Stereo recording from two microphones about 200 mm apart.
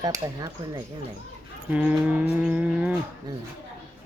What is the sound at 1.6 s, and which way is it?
Speech, 10° right (ahead or behind).